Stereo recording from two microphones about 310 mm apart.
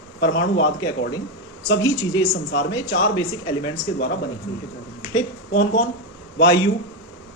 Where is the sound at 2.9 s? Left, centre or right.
Left.